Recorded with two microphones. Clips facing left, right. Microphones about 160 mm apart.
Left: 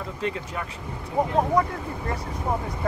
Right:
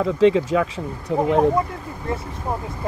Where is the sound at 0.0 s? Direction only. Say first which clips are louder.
Right 14 dB; 90° right.